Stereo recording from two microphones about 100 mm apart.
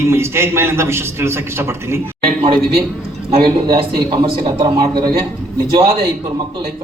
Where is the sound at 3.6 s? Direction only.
55° right (ahead or behind).